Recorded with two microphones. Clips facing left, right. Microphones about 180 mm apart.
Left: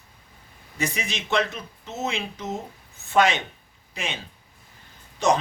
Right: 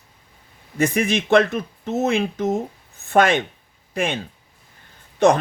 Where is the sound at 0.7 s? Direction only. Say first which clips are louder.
Right 10 dB; 55° right (ahead or behind).